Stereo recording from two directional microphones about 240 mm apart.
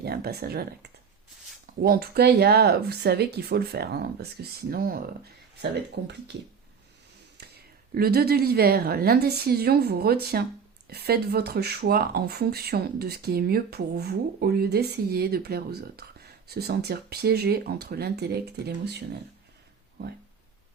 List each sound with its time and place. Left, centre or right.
0.0 s speech: right
7.3 s speech: right